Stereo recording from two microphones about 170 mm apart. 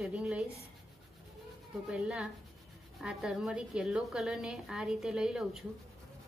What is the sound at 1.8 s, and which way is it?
A woman's voice, 5° right (ahead or behind).